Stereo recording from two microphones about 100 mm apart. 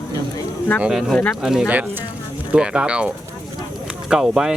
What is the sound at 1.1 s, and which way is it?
Speech, 5° left (ahead or behind).